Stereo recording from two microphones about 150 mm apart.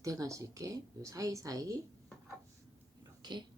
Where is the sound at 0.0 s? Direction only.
20° right (ahead or behind).